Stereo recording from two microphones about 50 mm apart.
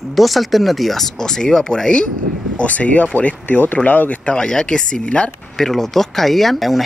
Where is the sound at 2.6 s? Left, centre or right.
Left.